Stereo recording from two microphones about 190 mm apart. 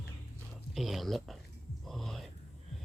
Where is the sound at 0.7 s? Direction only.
Centre (ahead or behind).